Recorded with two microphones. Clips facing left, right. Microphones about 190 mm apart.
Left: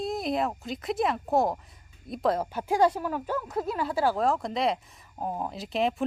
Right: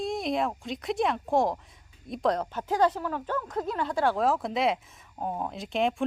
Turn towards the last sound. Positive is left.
turn(degrees=0)  # may be behind; listen again after turning